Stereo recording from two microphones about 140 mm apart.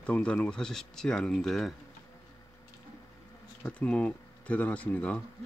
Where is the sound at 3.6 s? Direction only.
10° left (ahead or behind).